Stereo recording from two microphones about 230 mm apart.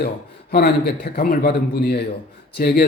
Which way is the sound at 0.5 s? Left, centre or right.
Left.